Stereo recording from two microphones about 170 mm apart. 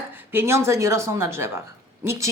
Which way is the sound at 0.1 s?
10° right (ahead or behind).